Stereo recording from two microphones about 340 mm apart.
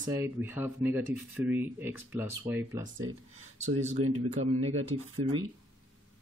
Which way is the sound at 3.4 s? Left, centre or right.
Centre.